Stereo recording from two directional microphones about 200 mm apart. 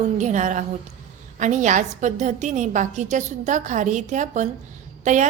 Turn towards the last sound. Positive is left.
turn(degrees=-35)  # may be behind; listen again after turning